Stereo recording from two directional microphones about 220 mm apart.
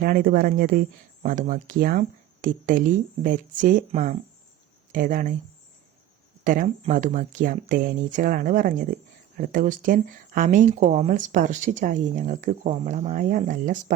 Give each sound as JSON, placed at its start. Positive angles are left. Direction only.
{"t": 0.0, "sound": "speech", "side_deg": -40}
{"t": 6.4, "sound": "speech", "side_deg": -35}